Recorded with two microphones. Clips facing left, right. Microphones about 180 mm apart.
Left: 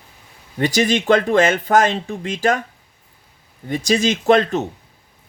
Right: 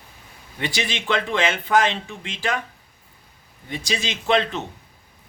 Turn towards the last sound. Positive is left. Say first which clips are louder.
# left 6 dB
turn(degrees=45)  # may be behind; listen again after turning